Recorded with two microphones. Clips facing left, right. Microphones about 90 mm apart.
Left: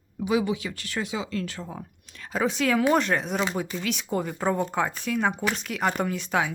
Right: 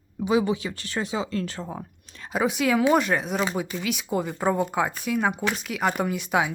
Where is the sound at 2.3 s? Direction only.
10° right (ahead or behind).